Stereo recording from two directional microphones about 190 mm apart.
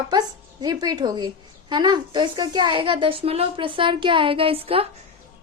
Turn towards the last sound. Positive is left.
turn(degrees=-30)  # may be behind; listen again after turning